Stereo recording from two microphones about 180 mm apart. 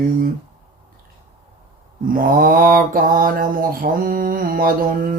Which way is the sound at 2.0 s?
50° right (ahead or behind).